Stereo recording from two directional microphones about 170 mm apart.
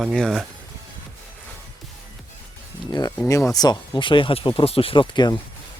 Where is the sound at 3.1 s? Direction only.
15° left (ahead or behind).